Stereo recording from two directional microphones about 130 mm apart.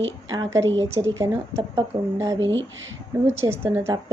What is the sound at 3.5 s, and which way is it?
Speech, 20° right (ahead or behind).